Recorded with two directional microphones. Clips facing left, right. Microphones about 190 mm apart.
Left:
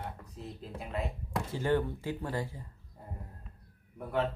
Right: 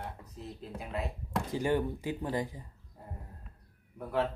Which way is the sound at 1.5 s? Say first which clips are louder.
Even; 15° right (ahead or behind).